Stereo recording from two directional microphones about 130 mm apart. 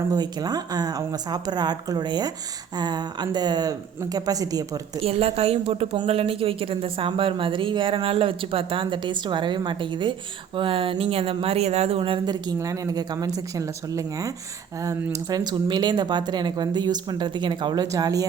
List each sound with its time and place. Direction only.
0.1 s speech: 30° right (ahead or behind)
5.0 s a woman's voice: 50° right (ahead or behind); by 18.3 s 25° right (ahead or behind)